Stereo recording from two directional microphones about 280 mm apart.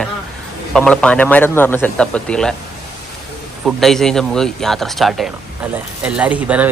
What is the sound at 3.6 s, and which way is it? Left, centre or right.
A man's voice, centre.